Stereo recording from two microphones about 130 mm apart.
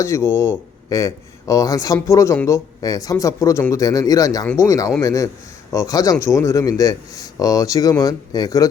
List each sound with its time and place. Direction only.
0.0 s speech: 20° left (ahead or behind)